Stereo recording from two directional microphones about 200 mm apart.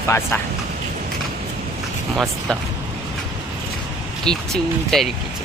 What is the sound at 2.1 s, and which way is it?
Speech, centre (ahead or behind).